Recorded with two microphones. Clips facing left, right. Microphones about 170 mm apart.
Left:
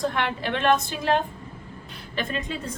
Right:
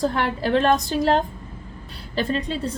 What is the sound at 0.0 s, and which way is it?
A woman's voice, 35° right (ahead or behind).